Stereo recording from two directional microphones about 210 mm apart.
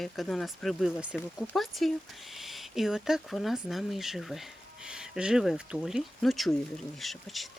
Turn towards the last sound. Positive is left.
turn(degrees=0)  # may be behind; listen again after turning